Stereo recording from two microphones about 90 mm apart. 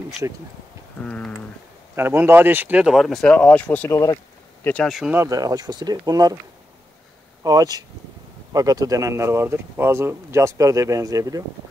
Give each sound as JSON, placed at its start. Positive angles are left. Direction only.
{"t": 0.2, "sound": "speech", "side_deg": -35}
{"t": 1.0, "sound": "speech", "side_deg": 10}
{"t": 2.0, "sound": "speech", "side_deg": -25}
{"t": 2.8, "sound": "speech", "side_deg": -5}
{"t": 3.3, "sound": "speech", "side_deg": 15}
{"t": 3.9, "sound": "speech", "side_deg": 45}
{"t": 4.8, "sound": "speech", "side_deg": -5}
{"t": 5.1, "sound": "speech", "side_deg": -35}
{"t": 7.4, "sound": "speech", "side_deg": -45}